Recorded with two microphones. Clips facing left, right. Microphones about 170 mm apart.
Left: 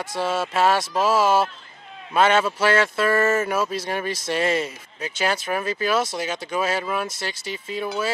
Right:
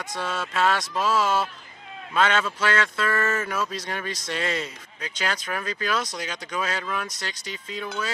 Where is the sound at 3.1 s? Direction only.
25° left (ahead or behind).